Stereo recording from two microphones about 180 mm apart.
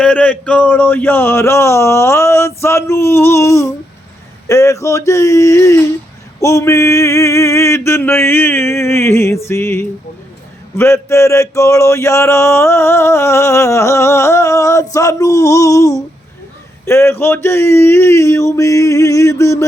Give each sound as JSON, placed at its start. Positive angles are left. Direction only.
{"t": 0.0, "sound": "male singing", "side_deg": 5}